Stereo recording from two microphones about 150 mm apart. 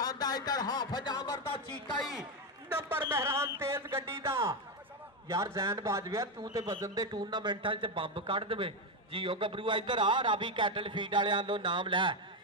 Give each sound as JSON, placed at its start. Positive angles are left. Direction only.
{"t": 0.0, "sound": "speech", "side_deg": 25}
{"t": 3.0, "sound": "a sound", "side_deg": -20}
{"t": 5.3, "sound": "speech", "side_deg": -20}